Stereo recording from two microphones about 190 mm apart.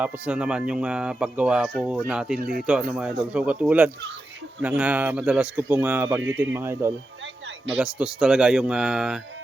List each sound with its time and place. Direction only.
0.0 s speech: 5° right (ahead or behind)
2.4 s speech: 50° right (ahead or behind)
2.6 s speech: 5° right (ahead or behind)